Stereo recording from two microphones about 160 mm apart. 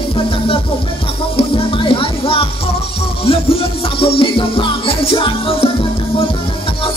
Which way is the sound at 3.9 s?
35° left (ahead or behind).